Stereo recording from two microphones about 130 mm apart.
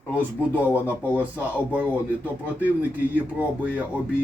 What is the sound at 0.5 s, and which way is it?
Speech, 15° left (ahead or behind).